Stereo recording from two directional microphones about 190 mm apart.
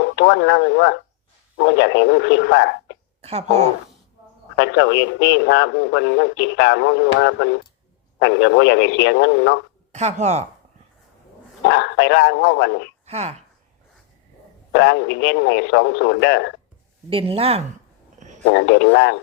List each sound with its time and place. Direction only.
0.0 s a man's voice: 65° left (ahead or behind)
3.2 s speech: 35° right (ahead or behind)
4.5 s a man's voice: 70° left (ahead or behind)
9.9 s speech: 35° right (ahead or behind)
11.7 s a man's voice: 70° left (ahead or behind)
13.1 s speech: 35° right (ahead or behind)
14.7 s a man's voice: 65° left (ahead or behind)
17.1 s speech: 30° right (ahead or behind)
18.2 s a sound: 40° right (ahead or behind)
18.4 s a man's voice: 65° left (ahead or behind)